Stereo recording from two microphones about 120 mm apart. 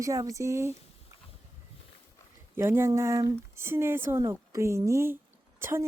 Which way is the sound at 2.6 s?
20° right (ahead or behind).